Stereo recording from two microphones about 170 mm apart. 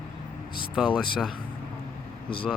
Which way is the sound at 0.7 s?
5° right (ahead or behind).